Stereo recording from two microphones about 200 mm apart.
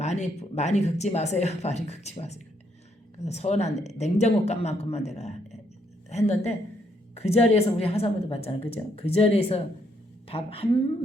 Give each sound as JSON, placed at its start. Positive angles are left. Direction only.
{"t": 0.0, "sound": "a woman's voice", "side_deg": 35}